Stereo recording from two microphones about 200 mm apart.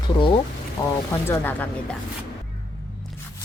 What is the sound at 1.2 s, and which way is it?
Speech, 10° left (ahead or behind).